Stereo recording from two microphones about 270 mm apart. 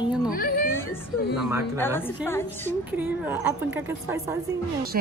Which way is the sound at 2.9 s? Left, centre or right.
Centre.